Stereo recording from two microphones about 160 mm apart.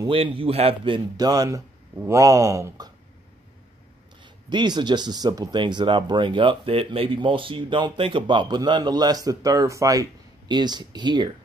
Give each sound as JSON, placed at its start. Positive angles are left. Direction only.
{"t": 0.0, "sound": "a man's voice", "side_deg": -35}
{"t": 4.2, "sound": "speech", "side_deg": -30}